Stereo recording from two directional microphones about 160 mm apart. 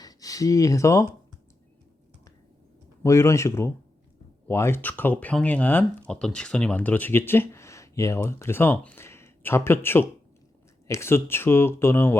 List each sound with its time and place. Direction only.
0.0 s speech: 20° left (ahead or behind)
3.0 s speech: 20° left (ahead or behind)